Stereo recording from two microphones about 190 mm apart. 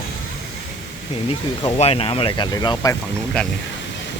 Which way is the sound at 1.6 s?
30° left (ahead or behind).